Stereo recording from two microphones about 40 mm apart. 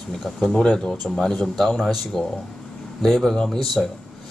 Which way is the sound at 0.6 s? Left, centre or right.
Centre.